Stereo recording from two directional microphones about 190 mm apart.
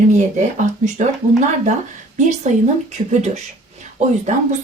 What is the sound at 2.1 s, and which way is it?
Speech, 40° right (ahead or behind).